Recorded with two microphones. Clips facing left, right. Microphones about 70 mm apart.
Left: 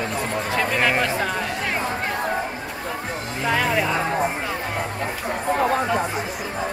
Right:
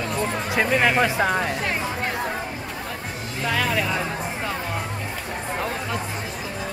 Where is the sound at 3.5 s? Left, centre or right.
Centre.